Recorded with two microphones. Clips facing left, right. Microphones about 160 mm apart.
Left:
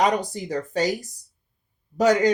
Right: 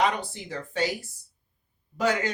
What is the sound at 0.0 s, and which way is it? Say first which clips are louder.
Speech: left 4 dB; 40° left (ahead or behind).